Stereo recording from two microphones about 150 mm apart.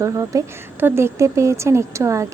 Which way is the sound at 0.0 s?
20° right (ahead or behind).